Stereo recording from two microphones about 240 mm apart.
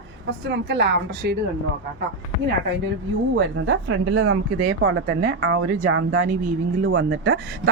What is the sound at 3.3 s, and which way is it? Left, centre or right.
Speech, right.